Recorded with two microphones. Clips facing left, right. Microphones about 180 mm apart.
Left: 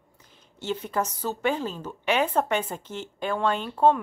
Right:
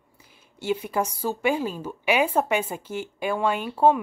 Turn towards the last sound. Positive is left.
turn(degrees=-10)  # may be behind; listen again after turning